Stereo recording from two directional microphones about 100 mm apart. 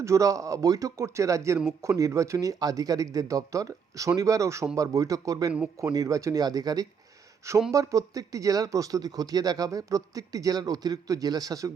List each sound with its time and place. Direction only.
0.0 s speech: 30° right (ahead or behind)